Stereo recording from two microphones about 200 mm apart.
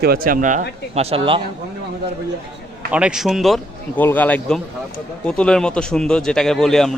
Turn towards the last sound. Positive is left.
turn(degrees=0)  # may be behind; listen again after turning